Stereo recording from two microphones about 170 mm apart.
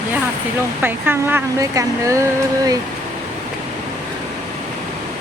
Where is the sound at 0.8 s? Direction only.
10° right (ahead or behind).